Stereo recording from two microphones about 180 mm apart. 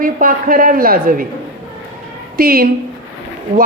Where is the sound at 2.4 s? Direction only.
55° right (ahead or behind).